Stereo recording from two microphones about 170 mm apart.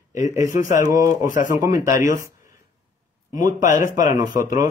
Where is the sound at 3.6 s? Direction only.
50° left (ahead or behind).